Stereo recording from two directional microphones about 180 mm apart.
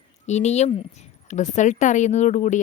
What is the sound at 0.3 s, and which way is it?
Speech, 40° left (ahead or behind).